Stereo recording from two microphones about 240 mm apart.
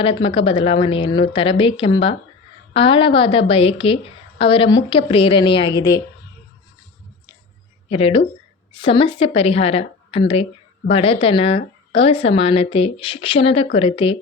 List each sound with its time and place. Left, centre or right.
0.0 s a woman's voice: left
7.9 s a woman's voice: left